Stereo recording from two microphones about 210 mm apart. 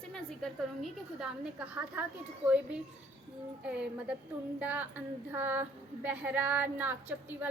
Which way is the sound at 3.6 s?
5° right (ahead or behind).